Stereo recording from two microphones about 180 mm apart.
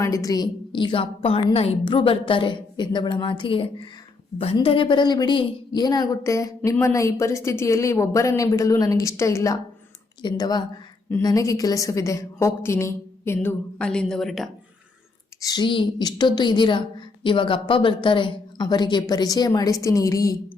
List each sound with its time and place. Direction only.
0.0 s a woman's voice: 20° left (ahead or behind); by 14.5 s centre (ahead or behind)
15.4 s a woman's voice: 20° left (ahead or behind)